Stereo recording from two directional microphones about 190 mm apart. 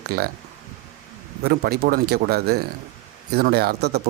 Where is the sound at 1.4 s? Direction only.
55° right (ahead or behind).